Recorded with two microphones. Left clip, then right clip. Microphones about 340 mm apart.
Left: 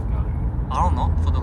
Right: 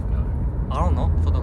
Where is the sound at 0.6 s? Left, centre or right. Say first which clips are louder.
Left 4 dB; centre.